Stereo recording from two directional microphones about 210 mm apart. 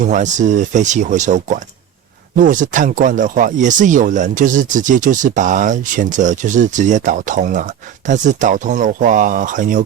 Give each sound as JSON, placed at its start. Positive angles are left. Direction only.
{"t": 0.0, "sound": "speech", "side_deg": -35}